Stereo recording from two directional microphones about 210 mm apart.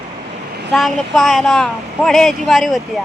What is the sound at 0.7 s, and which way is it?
Speech, centre (ahead or behind).